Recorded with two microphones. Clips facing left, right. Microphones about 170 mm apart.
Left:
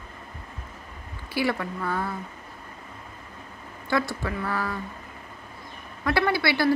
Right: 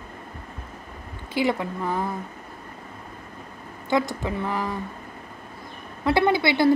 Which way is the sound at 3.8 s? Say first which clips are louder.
Right 3 dB; 20° right (ahead or behind).